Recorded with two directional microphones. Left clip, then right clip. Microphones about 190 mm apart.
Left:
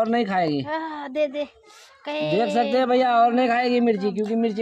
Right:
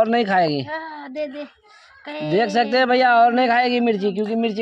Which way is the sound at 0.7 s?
35° left (ahead or behind).